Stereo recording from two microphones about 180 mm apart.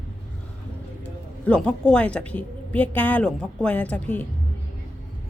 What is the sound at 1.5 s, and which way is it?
A woman's voice, 5° left (ahead or behind).